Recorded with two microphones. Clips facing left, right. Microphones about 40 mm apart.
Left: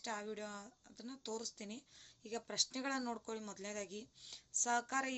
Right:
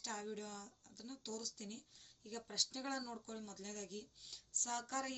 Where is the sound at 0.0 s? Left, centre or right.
Left.